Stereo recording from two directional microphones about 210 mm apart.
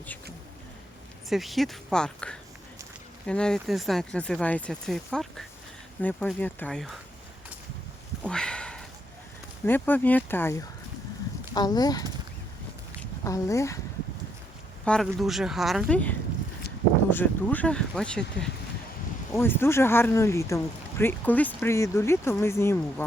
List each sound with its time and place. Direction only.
1.3 s speech: centre (ahead or behind)
8.3 s sniff: 5° left (ahead or behind)
9.6 s speech: 10° left (ahead or behind)
14.8 s speech: centre (ahead or behind)